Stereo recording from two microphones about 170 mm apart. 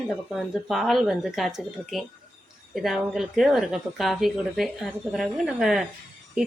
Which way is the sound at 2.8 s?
Centre (ahead or behind).